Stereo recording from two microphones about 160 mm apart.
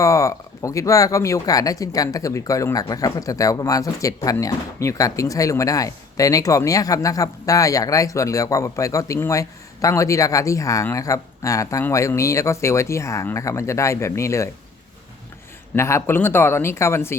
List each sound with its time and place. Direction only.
0.0 s speech: 20° left (ahead or behind)
15.7 s speech: 15° left (ahead or behind)